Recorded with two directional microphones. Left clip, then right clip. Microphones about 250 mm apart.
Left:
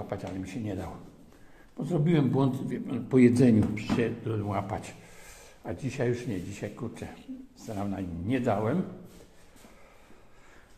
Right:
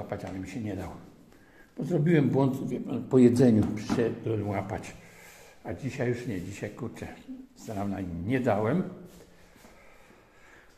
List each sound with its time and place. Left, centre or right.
0.1 s a man's voice: centre
3.2 s a man's voice: left
4.3 s speech: centre